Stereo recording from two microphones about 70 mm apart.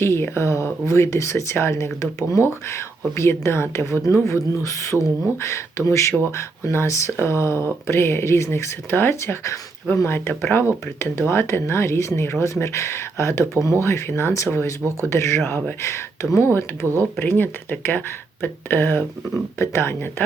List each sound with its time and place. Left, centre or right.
0.0 s speech: left
16.8 s speech: right
17.2 s speech: left